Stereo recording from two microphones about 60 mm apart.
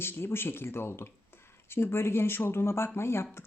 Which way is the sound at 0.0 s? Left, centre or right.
Left.